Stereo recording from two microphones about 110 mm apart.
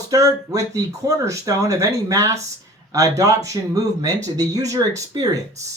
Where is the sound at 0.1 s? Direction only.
30° right (ahead or behind).